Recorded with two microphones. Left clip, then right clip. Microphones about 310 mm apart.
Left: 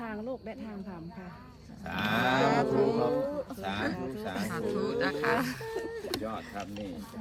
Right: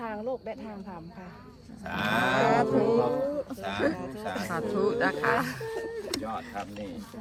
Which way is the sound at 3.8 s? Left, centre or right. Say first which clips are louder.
Right 5 dB; centre.